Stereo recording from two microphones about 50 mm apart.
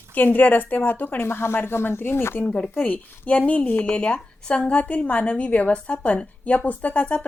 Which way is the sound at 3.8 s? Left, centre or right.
Left.